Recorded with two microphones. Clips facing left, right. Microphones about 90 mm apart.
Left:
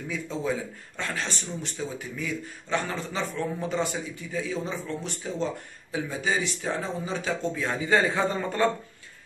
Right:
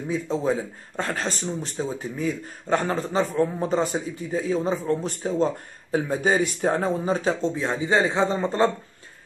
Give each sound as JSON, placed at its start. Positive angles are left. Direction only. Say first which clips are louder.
{"t": 0.1, "sound": "speech", "louder": "right 6 dB", "side_deg": -35}